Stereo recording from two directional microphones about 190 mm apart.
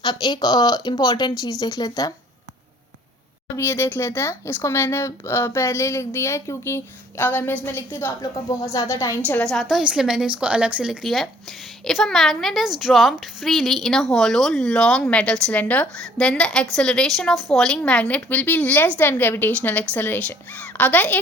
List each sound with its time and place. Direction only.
0.0 s speech: 25° left (ahead or behind)
3.5 s speech: 15° left (ahead or behind)